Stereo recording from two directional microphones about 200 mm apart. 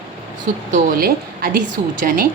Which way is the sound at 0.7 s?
45° right (ahead or behind).